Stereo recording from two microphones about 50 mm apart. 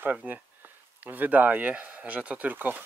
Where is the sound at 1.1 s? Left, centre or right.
Right.